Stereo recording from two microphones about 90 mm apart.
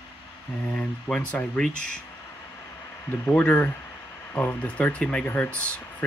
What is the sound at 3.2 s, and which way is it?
Speech, 20° left (ahead or behind).